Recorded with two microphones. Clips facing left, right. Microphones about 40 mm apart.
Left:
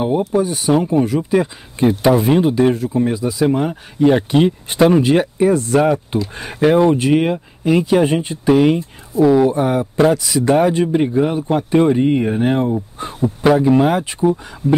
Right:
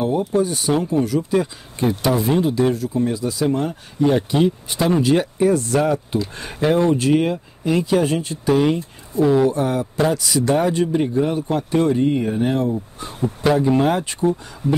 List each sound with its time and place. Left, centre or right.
0.3 s speech: centre
0.8 s speech: centre
4.0 s speech: left
9.1 s speech: centre
9.4 s speech: centre
10.1 s speech: centre; by 13.1 s left
13.4 s speech: centre